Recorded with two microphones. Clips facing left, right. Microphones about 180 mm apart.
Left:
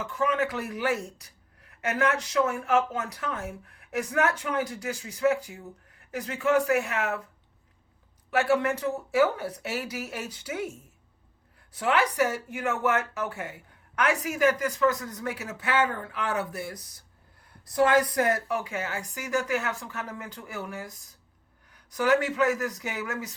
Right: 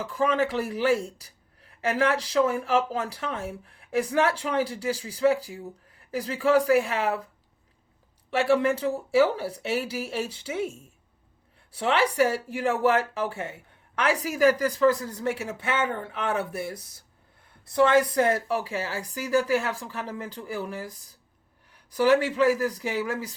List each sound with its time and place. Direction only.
0.0 s a man's voice: 35° right (ahead or behind)
8.3 s a man's voice: 30° right (ahead or behind)